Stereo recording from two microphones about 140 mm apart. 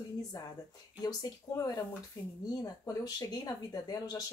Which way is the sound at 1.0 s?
25° left (ahead or behind).